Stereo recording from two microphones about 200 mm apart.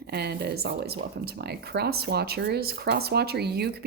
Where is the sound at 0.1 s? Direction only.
55° right (ahead or behind).